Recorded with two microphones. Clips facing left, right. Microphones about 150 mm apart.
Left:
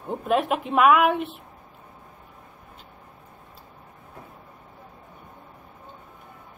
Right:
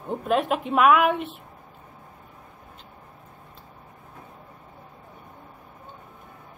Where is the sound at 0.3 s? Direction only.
Centre (ahead or behind).